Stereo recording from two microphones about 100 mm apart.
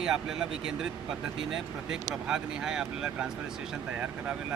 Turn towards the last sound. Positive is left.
turn(degrees=-5)  # may be behind; listen again after turning